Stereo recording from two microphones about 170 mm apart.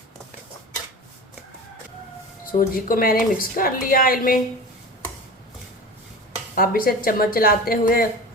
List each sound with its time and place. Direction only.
2.5 s a woman's voice: 55° left (ahead or behind)
6.6 s a woman's voice: 55° left (ahead or behind)